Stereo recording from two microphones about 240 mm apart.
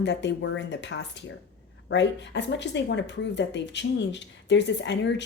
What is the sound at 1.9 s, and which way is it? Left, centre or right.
Speech, left.